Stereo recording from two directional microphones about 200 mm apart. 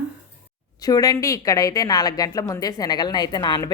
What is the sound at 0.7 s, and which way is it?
A woman's voice, 20° left (ahead or behind).